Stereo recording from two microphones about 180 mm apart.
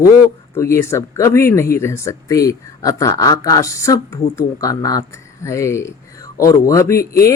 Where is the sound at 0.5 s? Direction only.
15° left (ahead or behind).